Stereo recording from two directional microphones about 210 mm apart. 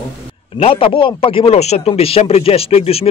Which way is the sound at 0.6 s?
25° left (ahead or behind).